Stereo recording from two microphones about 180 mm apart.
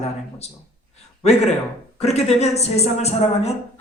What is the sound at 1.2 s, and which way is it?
A woman's voice, 35° left (ahead or behind).